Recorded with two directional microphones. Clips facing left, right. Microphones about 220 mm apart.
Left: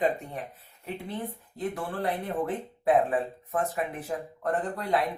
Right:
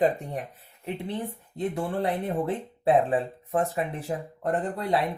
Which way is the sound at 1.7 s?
25° right (ahead or behind).